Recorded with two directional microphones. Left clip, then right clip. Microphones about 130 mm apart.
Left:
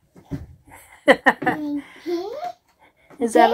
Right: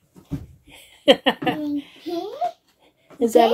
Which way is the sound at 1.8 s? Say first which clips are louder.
Left 1 dB; 15° right (ahead or behind).